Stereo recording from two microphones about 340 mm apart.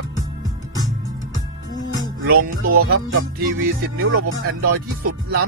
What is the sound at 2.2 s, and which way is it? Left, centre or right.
Music, right.